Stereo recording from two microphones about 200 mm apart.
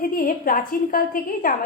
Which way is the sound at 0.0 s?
45° left (ahead or behind).